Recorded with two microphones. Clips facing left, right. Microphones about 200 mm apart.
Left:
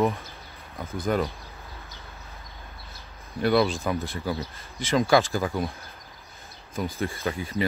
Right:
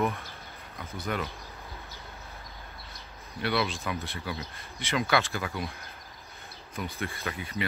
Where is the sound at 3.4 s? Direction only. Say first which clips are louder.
Left 8 dB; 45° left (ahead or behind).